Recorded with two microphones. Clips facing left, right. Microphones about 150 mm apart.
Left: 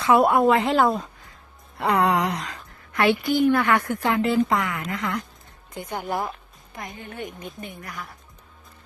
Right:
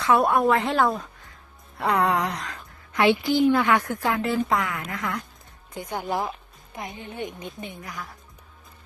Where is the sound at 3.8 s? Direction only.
5° right (ahead or behind).